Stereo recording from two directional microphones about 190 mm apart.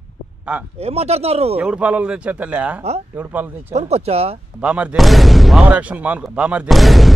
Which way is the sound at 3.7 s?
35° right (ahead or behind).